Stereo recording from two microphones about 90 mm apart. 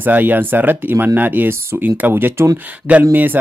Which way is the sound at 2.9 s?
15° right (ahead or behind).